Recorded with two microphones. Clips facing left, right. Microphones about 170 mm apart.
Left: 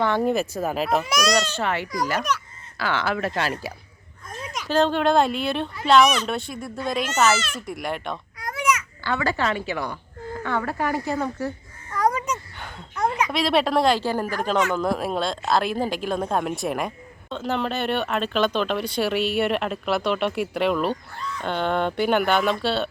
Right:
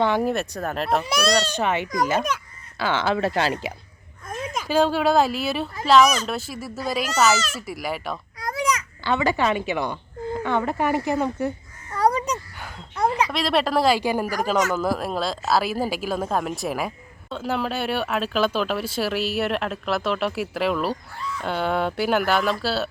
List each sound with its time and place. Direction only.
0.0 s speech: 15° right (ahead or behind)
0.3 s speech: centre (ahead or behind)
1.0 s a child's voice: 30° right (ahead or behind)
1.5 s speech: 20° right (ahead or behind)
4.3 s a sound: 50° right (ahead or behind)
4.7 s speech: 10° right (ahead or behind)
8.4 s baby cry: 35° right (ahead or behind)
9.0 s a woman's voice: 20° right (ahead or behind)
11.9 s a sound: 35° right (ahead or behind)
13.3 s speech: centre (ahead or behind)